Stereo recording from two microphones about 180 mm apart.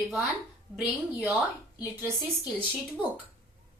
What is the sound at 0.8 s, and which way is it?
A woman's voice, 5° right (ahead or behind).